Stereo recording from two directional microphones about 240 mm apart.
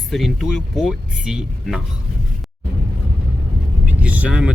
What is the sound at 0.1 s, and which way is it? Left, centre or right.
Speech, centre.